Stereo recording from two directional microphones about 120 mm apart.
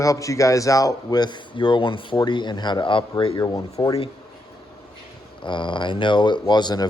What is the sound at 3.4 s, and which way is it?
Speech, 30° left (ahead or behind).